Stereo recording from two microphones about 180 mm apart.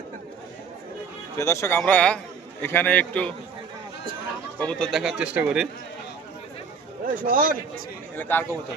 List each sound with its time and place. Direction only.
1.4 s a man's voice: 15° left (ahead or behind)
4.6 s speech: 5° left (ahead or behind)
7.0 s a man's voice: 50° right (ahead or behind)
8.1 s a man's voice: 10° left (ahead or behind)